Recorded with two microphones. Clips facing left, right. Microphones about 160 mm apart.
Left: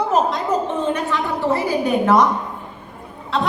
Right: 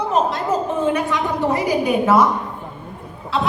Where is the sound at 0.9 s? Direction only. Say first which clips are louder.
Right 1 dB; 10° right (ahead or behind).